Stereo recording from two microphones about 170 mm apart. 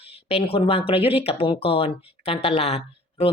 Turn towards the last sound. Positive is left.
turn(degrees=35)  # may be behind; listen again after turning